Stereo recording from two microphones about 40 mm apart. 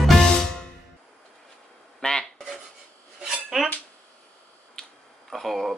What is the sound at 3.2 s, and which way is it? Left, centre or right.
Cutlery, centre.